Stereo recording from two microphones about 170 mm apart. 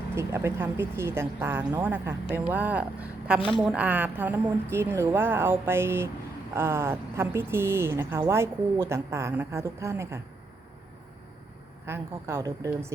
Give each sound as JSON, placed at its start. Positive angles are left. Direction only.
{"t": 0.2, "sound": "speech", "side_deg": -15}
{"t": 11.9, "sound": "speech", "side_deg": -15}